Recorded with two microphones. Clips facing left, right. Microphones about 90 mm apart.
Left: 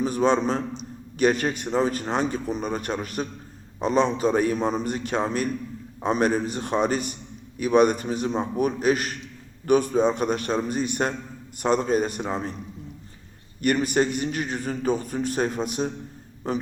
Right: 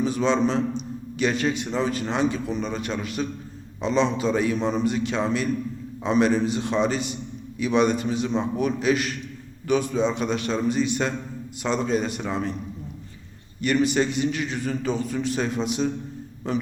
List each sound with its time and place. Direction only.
0.0 s a man's voice: 45° left (ahead or behind)
13.7 s a man's voice: 45° left (ahead or behind)